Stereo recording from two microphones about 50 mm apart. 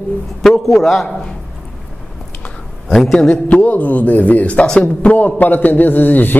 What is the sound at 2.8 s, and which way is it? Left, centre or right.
Speech, centre.